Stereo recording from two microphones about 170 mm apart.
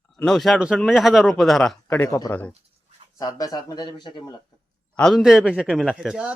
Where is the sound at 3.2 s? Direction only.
20° left (ahead or behind).